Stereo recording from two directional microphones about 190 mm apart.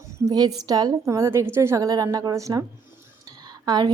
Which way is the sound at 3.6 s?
20° right (ahead or behind).